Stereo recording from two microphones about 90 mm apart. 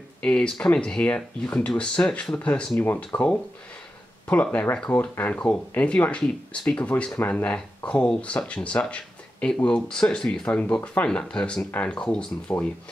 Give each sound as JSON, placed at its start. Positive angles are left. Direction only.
{"t": 0.2, "sound": "speech", "side_deg": 10}